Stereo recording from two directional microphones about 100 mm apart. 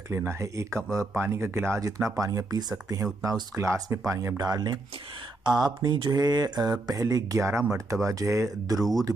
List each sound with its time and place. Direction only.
0.1 s speech: 25° right (ahead or behind)
8.7 s speech: centre (ahead or behind)